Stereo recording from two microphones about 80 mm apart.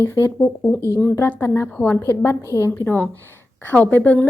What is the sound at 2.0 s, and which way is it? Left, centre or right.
Speech, left.